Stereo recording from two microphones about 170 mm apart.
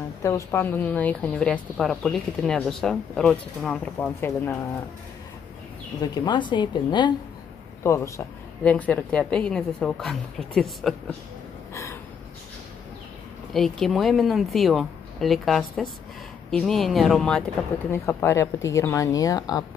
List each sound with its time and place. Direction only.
0.2 s a woman's voice: 15° left (ahead or behind)
6.2 s a woman's voice: 25° left (ahead or behind)
7.8 s a woman's voice: 15° left (ahead or behind)
11.7 s a sound: 15° left (ahead or behind)
13.5 s a woman's voice: centre (ahead or behind)
17.9 s a woman's voice: 15° left (ahead or behind)